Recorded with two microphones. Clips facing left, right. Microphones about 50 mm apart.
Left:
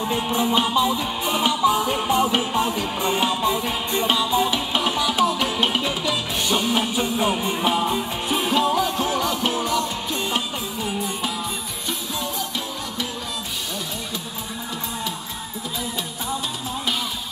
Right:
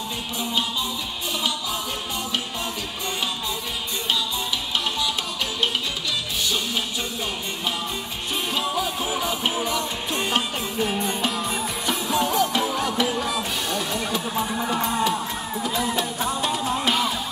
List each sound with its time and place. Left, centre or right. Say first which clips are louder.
0.1 s music: left 7 dB; left
4.8 s music: left 6 dB; centre
8.3 s music: left 6 dB; centre
9.2 s music: left 2 dB; centre
12.4 s music: right 7 dB; right